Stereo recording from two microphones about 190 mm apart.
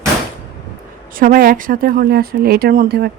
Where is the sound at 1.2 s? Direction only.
50° right (ahead or behind).